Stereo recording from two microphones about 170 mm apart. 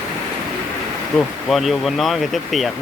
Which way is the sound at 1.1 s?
Centre (ahead or behind).